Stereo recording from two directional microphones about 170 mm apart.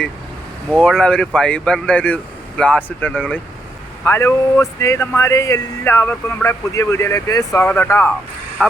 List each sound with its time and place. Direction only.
0.7 s speech: centre (ahead or behind)